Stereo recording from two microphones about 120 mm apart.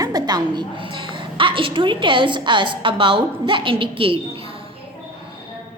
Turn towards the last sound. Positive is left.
turn(degrees=-50)  # may be behind; listen again after turning